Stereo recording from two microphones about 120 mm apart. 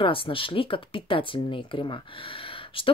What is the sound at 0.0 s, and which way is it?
Speech, 45° left (ahead or behind).